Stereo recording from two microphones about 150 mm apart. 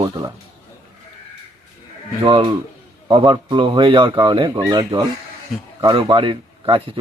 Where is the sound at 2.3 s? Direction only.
35° right (ahead or behind).